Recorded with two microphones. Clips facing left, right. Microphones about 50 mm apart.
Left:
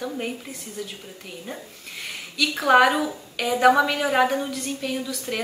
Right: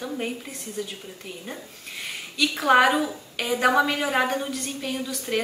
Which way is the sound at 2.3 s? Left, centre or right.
Centre.